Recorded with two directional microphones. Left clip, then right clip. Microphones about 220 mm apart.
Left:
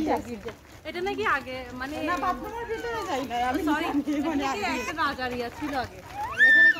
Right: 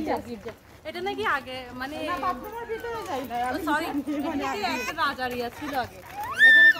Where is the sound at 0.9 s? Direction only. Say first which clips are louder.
Left 1 dB; 25° right (ahead or behind).